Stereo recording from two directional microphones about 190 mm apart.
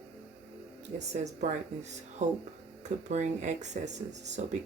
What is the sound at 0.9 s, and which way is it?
Speech, 40° right (ahead or behind).